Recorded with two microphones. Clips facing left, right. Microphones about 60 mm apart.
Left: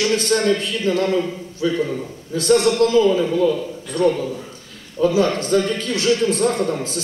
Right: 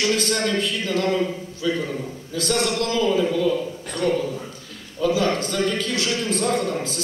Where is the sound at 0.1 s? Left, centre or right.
Centre.